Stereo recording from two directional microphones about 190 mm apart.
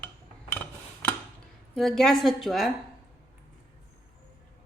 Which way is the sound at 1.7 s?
Centre (ahead or behind).